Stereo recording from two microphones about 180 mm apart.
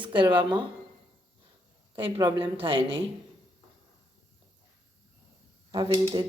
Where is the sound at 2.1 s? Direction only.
20° right (ahead or behind).